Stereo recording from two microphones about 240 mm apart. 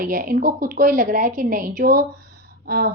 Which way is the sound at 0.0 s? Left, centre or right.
Right.